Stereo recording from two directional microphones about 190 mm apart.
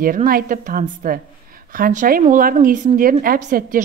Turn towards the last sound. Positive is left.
turn(degrees=-45)  # may be behind; listen again after turning